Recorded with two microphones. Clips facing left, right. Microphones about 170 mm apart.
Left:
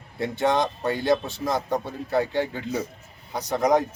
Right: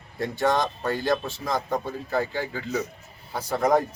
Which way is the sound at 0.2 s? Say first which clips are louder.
Left 1 dB; 20° left (ahead or behind).